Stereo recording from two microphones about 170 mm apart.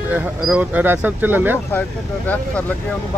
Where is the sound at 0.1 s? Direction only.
10° right (ahead or behind).